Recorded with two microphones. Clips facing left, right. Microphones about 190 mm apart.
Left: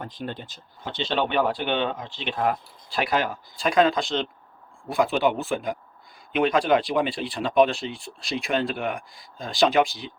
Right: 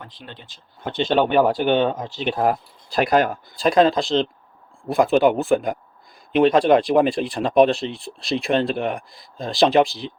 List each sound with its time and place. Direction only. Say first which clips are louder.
0.0 s speech: left 7 dB; 45° left (ahead or behind)
0.8 s speech: right 7 dB; 55° right (ahead or behind); by 4.3 s 35° right (ahead or behind)
4.9 s speech: right 6 dB; 45° right (ahead or behind)
6.3 s speech: right 6 dB; 35° right (ahead or behind)